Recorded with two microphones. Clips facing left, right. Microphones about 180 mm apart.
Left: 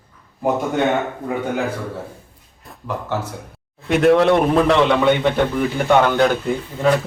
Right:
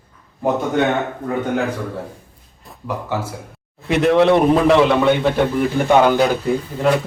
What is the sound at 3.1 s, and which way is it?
A man's voice, 5° right (ahead or behind).